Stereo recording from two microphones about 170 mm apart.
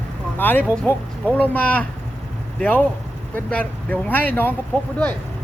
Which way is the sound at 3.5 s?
10° left (ahead or behind).